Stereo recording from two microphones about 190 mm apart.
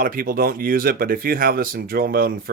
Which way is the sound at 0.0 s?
50° right (ahead or behind).